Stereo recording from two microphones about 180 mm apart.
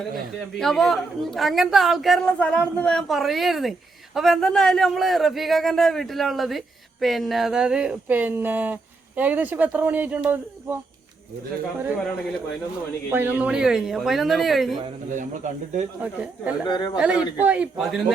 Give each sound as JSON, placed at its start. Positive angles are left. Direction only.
{"t": 0.6, "sound": "a woman's voice", "side_deg": 0}
{"t": 13.1, "sound": "a woman's voice", "side_deg": -10}
{"t": 15.1, "sound": "speech", "side_deg": -45}
{"t": 16.0, "sound": "a woman's voice", "side_deg": -5}
{"t": 16.6, "sound": "speech", "side_deg": 25}
{"t": 16.9, "sound": "a woman's voice", "side_deg": -5}